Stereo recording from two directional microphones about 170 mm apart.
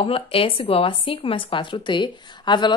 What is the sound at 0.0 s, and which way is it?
A woman's voice, 35° left (ahead or behind).